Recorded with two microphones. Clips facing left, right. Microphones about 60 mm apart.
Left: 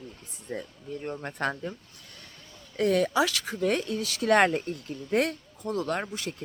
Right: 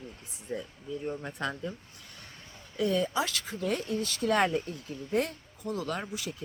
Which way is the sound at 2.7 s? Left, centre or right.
Left.